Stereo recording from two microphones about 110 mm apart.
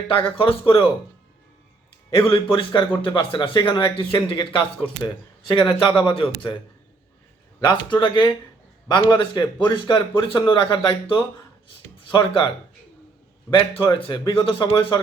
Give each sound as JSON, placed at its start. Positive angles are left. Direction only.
{"t": 0.1, "sound": "a man's voice", "side_deg": 50}
{"t": 2.0, "sound": "a man's voice", "side_deg": 50}
{"t": 5.5, "sound": "a man's voice", "side_deg": 45}
{"t": 7.7, "sound": "a man's voice", "side_deg": 45}
{"t": 13.5, "sound": "a man's voice", "side_deg": 50}